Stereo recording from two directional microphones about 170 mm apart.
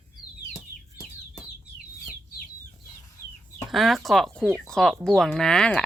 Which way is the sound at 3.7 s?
Centre (ahead or behind).